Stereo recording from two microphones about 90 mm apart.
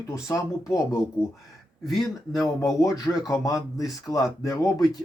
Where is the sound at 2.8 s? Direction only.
35° left (ahead or behind).